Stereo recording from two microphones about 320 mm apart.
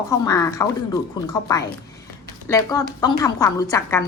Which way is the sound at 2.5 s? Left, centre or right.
Centre.